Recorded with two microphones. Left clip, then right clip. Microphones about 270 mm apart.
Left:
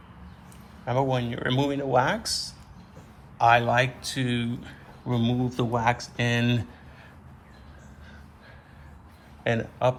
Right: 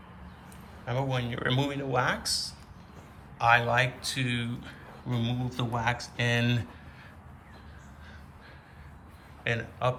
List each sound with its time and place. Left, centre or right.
1.1 s a man's voice: centre
9.4 s speech: centre